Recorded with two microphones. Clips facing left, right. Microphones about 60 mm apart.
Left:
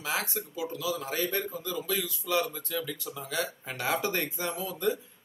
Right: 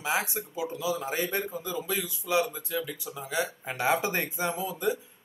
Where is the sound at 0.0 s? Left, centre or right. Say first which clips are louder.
Right 3 dB; centre.